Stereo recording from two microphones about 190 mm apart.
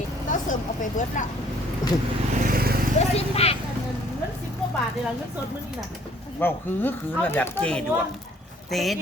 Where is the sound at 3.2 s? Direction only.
30° left (ahead or behind).